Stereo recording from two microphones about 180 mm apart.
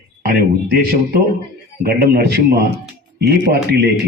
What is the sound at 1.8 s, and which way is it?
A man's voice, 65° right (ahead or behind).